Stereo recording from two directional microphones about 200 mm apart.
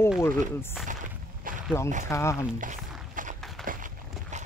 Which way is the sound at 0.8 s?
40° right (ahead or behind).